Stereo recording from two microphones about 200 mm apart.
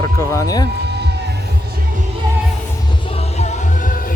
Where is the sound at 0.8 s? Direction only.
55° right (ahead or behind).